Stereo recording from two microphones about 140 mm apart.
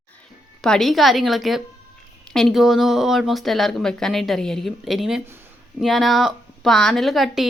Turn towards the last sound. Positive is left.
turn(degrees=0)  # may be behind; listen again after turning